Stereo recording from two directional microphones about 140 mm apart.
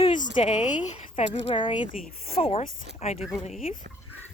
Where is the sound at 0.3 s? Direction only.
55° left (ahead or behind).